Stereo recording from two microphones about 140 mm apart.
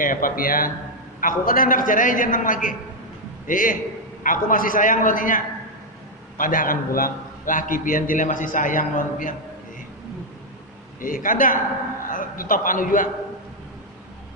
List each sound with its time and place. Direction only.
0.0 s a man's voice: 80° left
11.0 s a man's voice: 75° left (ahead or behind)